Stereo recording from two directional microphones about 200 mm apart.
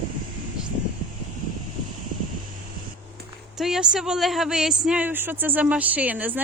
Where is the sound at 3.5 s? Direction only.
Centre (ahead or behind).